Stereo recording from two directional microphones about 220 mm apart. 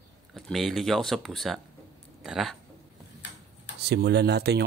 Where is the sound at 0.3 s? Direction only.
Centre (ahead or behind).